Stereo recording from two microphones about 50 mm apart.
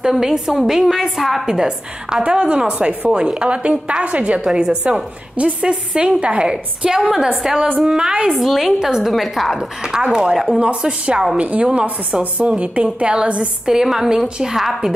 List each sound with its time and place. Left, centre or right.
0.1 s speech: centre
1.4 s speech: centre
7.6 s speech: right
7.9 s speech: centre
8.4 s a woman's voice: centre
11.3 s speech: right; by 14.8 s centre